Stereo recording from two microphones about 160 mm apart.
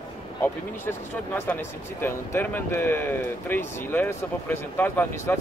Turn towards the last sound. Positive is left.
turn(degrees=15)  # may be behind; listen again after turning